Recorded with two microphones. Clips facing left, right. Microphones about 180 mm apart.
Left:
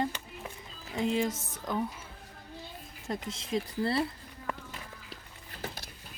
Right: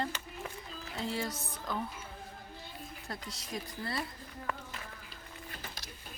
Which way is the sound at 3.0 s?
25° left (ahead or behind).